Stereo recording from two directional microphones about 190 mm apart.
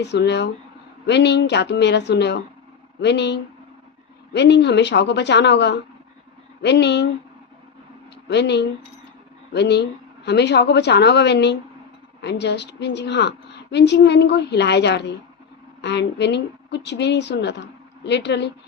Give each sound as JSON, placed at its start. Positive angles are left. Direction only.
{"t": 0.0, "sound": "a woman's voice", "side_deg": 65}
{"t": 8.3, "sound": "a woman's voice", "side_deg": 65}